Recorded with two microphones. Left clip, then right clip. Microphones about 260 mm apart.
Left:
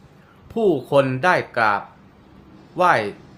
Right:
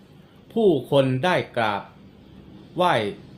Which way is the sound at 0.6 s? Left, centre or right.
Centre.